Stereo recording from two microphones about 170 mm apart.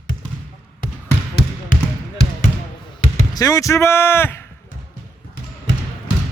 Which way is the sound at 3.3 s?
20° left (ahead or behind).